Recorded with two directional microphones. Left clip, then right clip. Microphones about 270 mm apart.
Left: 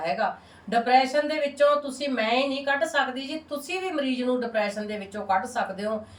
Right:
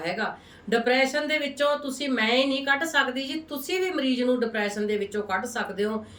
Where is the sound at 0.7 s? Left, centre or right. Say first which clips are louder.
Left 2 dB; centre.